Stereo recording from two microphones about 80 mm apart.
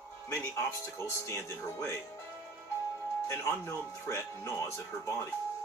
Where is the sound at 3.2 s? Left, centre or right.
Left.